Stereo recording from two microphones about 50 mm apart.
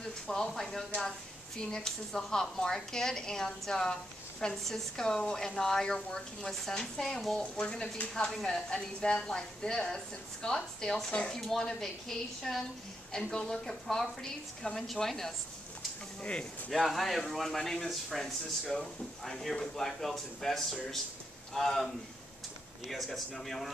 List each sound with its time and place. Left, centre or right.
0.3 s a woman's voice: centre
16.2 s speech: left
16.7 s a woman's voice: centre